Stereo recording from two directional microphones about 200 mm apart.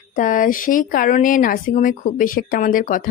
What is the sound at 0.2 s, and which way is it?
Speech, 40° left (ahead or behind).